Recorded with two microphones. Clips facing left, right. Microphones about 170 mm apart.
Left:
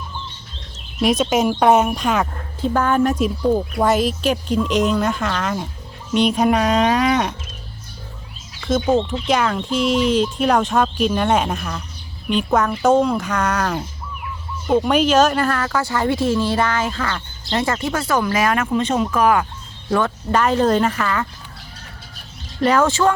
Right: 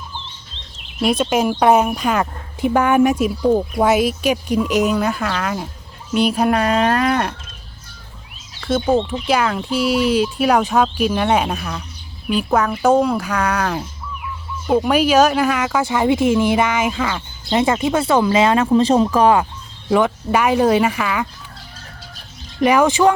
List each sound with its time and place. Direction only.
0.9 s speech: centre (ahead or behind)
8.6 s speech: 10° right (ahead or behind); by 19.5 s 30° right (ahead or behind)
19.9 s speech: 15° right (ahead or behind)
22.6 s speech: 15° right (ahead or behind)